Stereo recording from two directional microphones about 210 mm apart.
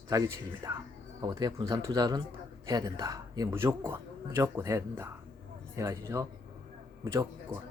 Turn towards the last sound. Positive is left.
turn(degrees=-15)  # may be behind; listen again after turning